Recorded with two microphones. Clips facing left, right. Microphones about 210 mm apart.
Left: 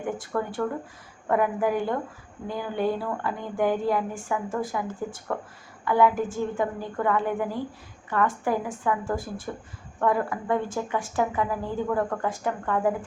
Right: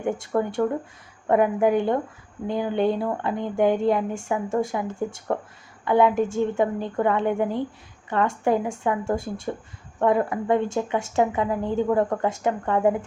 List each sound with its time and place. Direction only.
0.0 s speech: 25° right (ahead or behind)